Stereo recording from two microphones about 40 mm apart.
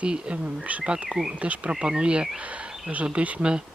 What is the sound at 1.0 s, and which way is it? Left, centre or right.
Speech, centre.